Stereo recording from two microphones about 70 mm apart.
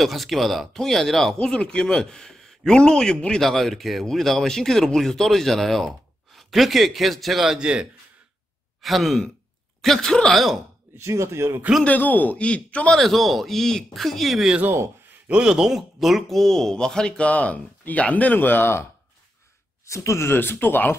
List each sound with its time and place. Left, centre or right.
0.0 s speech: centre
7.5 s a man's voice: centre
8.8 s speech: centre
11.0 s speech: right
11.8 s speech: left
12.9 s speech: centre
15.2 s speech: centre
17.3 s speech: left
19.9 s speech: left
20.2 s speech: left